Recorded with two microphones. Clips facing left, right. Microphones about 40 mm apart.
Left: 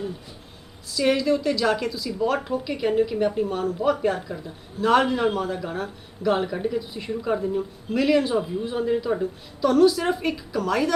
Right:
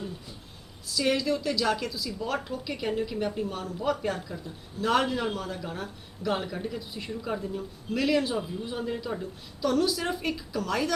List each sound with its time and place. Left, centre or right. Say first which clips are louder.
0.9 s a woman's voice: left 5 dB; centre
7.3 s a woman's voice: left 8 dB; centre
7.9 s a woman's voice: left 6 dB; centre